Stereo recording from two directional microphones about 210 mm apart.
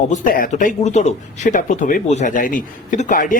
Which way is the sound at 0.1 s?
40° left (ahead or behind).